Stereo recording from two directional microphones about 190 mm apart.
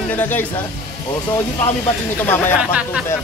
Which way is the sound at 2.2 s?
10° left (ahead or behind).